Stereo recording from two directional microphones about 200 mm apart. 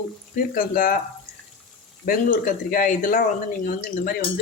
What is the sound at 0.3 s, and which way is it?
Speech, 45° left (ahead or behind).